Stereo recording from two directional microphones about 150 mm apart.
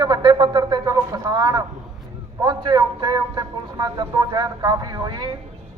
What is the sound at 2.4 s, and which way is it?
A man's voice, 30° right (ahead or behind).